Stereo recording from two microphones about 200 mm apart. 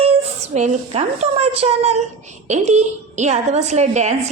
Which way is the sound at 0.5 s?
35° right (ahead or behind).